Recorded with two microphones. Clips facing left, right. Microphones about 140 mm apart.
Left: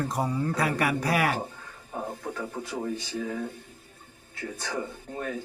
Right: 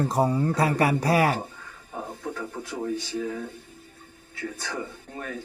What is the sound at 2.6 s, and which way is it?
Speech, 10° left (ahead or behind).